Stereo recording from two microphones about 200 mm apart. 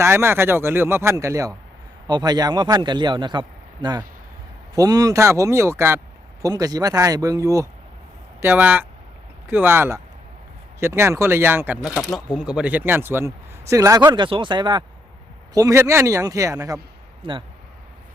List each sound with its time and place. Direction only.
0.0 s a man's voice: 10° right (ahead or behind)